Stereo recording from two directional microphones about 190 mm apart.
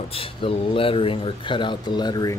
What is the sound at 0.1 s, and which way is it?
Speech, 30° left (ahead or behind).